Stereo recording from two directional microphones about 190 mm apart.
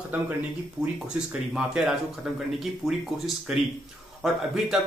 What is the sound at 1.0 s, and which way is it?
A man's voice, 5° right (ahead or behind).